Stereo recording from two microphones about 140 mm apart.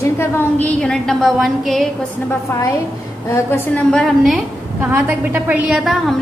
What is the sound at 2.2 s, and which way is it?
A woman's voice, 20° left (ahead or behind).